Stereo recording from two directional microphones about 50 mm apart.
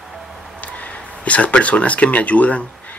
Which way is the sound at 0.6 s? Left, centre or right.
Left.